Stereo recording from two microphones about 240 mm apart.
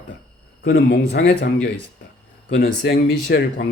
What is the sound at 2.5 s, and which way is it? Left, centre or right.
Speech, left.